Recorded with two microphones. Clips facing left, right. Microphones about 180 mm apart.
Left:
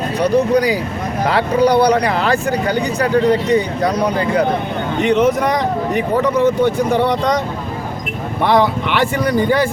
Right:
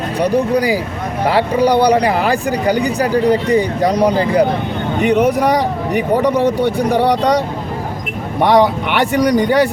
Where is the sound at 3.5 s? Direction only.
35° right (ahead or behind).